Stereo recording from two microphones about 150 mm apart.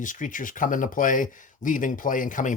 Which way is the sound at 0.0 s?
60° left (ahead or behind).